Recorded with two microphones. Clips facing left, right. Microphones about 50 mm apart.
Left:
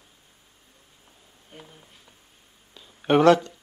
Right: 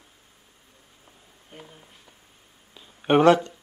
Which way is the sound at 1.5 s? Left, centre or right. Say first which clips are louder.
Right 1 dB; centre.